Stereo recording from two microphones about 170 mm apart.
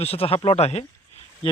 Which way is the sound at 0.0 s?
35° left (ahead or behind).